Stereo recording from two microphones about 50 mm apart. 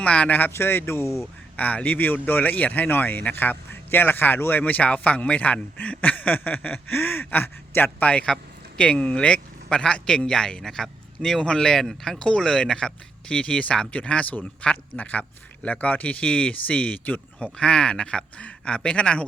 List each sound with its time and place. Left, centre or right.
0.0 s speech: left
0.5 s a man's voice: left
1.5 s speech: left
4.6 s a man's voice: left
8.0 s a man's voice: left